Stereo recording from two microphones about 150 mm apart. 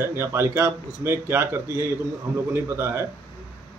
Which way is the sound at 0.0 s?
15° right (ahead or behind).